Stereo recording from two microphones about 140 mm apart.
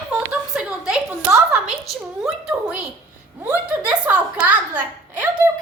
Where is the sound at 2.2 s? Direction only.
5° right (ahead or behind).